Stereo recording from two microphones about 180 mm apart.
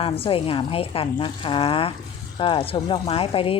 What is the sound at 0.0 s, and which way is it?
A woman's voice, 30° left (ahead or behind).